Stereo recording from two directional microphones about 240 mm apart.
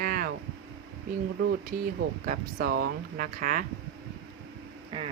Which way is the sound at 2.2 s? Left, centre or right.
Right.